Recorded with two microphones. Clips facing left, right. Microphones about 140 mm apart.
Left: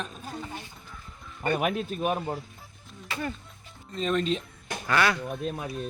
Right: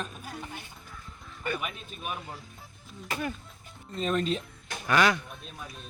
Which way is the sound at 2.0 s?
40° left (ahead or behind).